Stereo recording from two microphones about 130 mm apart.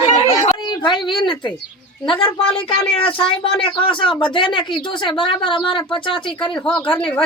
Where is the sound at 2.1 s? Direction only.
45° left (ahead or behind).